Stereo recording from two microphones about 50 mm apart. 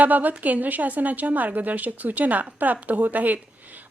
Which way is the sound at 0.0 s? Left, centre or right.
Right.